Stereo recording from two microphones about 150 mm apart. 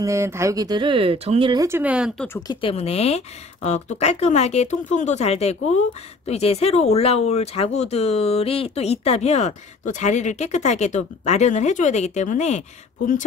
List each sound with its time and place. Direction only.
0.0 s speech: 20° right (ahead or behind); by 1.5 s 45° right (ahead or behind)
1.5 s speech: 20° right (ahead or behind)
1.8 s speech: 10° right (ahead or behind)
2.2 s speech: 15° left (ahead or behind)
2.5 s speech: 40° left (ahead or behind)